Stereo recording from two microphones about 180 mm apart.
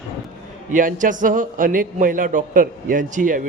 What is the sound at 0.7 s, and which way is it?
A man's voice, 45° right (ahead or behind).